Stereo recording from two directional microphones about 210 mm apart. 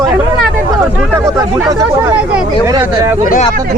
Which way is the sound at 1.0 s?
10° right (ahead or behind).